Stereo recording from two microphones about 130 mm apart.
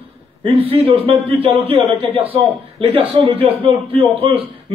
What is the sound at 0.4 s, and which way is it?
A man's voice, 45° right (ahead or behind).